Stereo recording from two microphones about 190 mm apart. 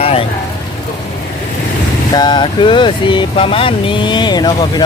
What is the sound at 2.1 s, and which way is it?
Speech, 20° left (ahead or behind).